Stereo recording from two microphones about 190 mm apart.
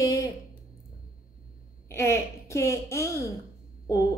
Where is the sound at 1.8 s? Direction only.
15° left (ahead or behind).